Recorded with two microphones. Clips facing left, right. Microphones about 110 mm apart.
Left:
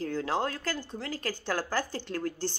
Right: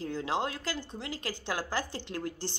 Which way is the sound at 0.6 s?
20° right (ahead or behind).